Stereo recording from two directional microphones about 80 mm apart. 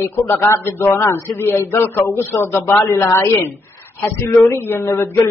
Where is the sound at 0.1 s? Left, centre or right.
Left.